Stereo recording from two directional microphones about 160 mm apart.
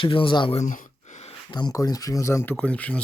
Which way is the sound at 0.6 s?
50° left (ahead or behind).